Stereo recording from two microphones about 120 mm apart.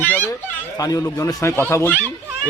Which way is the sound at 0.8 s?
30° left (ahead or behind).